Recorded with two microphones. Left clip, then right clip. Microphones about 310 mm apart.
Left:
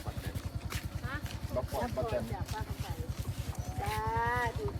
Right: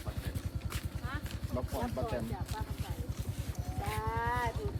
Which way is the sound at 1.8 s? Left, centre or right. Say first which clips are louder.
Left 2 dB; centre.